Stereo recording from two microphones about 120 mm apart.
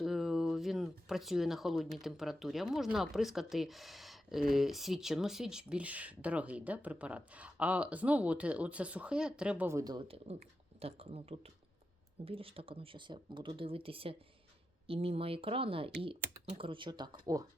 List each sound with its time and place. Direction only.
0.0 s speech: centre (ahead or behind)
9.6 s speech: 30° right (ahead or behind)
10.0 s speech: 55° right (ahead or behind); by 17.4 s 35° right (ahead or behind)